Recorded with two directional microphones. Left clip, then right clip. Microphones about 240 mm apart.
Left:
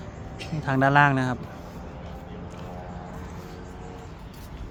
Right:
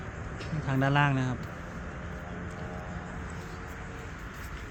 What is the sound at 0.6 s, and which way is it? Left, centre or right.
Speech, centre.